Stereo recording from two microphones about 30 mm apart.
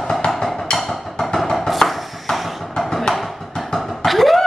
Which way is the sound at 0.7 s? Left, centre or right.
Centre.